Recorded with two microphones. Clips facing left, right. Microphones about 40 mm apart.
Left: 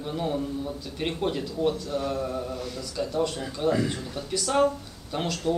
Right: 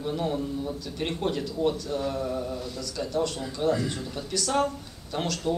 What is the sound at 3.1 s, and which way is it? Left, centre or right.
A man's voice, centre.